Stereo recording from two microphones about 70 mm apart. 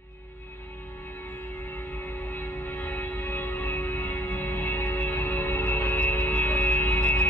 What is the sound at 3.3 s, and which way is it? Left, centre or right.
Music, left.